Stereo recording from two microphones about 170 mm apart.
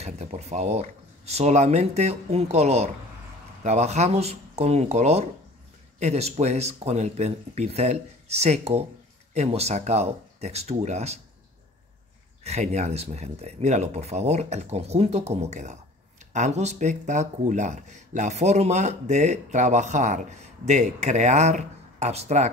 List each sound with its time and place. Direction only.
0.0 s speech: 40° right (ahead or behind)
12.4 s speech: 40° right (ahead or behind)